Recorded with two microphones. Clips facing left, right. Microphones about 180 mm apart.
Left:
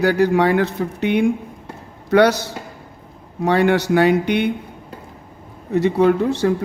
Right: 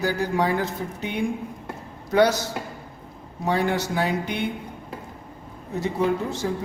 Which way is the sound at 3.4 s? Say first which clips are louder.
Left 7 dB; 70° left (ahead or behind).